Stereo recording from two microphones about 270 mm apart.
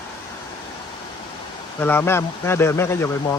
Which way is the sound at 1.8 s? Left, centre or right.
Centre.